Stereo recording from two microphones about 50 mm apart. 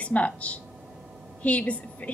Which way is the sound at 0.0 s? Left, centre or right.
Left.